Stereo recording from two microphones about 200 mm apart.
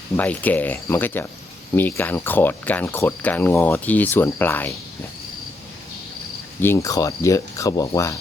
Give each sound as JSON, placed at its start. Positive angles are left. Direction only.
{"t": 0.2, "sound": "speech", "side_deg": 10}
{"t": 6.6, "sound": "speech", "side_deg": 15}